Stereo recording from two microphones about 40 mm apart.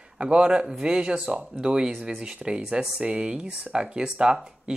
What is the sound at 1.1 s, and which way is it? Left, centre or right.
Speech, right.